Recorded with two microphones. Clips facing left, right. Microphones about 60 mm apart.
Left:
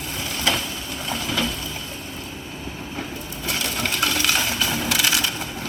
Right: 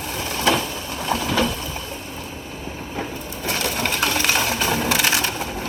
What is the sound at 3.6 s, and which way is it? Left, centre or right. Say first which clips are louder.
Coin: right 2 dB; right.